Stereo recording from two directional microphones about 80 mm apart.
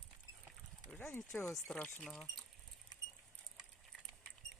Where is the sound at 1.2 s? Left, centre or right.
Left.